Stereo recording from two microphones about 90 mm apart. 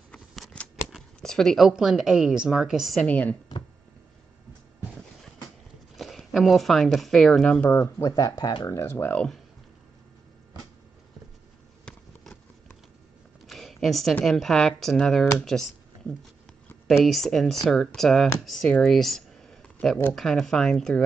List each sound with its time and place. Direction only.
0.5 s scissors: 10° left (ahead or behind)
0.9 s shuffling cards: 5° left (ahead or behind)
1.7 s a woman's voice: 5° right (ahead or behind)
3.0 s speech: 20° left (ahead or behind)
5.9 s speech: centre (ahead or behind)
7.8 s speech: 40° left (ahead or behind)
8.4 s speech: 55° left (ahead or behind)
8.6 s speech: 35° left (ahead or behind)
11.8 s a sound: 10° left (ahead or behind)
14.2 s speech: 5° left (ahead or behind)
16.8 s a woman's voice: centre (ahead or behind)